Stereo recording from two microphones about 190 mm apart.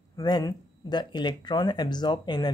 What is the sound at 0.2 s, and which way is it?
Speech, 20° left (ahead or behind).